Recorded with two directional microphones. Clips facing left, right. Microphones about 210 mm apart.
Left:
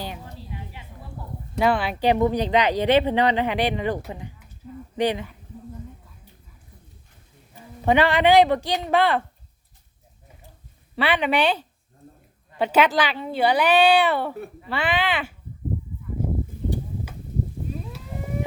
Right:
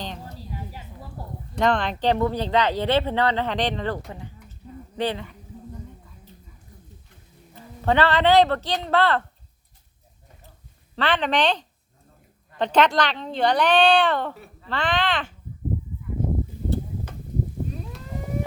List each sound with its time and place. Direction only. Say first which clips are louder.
0.3 s a sound: right 2 dB; 40° right (ahead or behind)
1.5 s speech: left 1 dB; 5° left (ahead or behind)
7.5 s a man's voice: left 2 dB; 15° left (ahead or behind)
10.9 s speech: left 1 dB; 10° left (ahead or behind)
16.6 s a sound: right 1 dB; 15° left (ahead or behind)
17.7 s moo: left 1 dB; 5° left (ahead or behind)